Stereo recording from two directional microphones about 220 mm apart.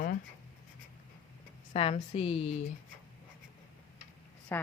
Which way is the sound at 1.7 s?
30° left (ahead or behind).